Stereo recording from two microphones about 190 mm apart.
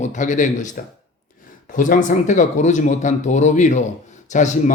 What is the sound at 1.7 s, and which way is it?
A man's voice, 45° left (ahead or behind).